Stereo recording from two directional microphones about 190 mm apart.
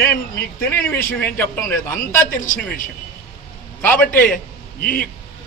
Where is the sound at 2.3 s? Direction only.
45° left (ahead or behind).